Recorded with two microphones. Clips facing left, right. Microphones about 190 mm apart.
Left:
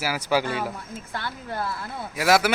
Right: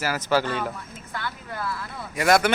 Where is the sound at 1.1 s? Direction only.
30° left (ahead or behind).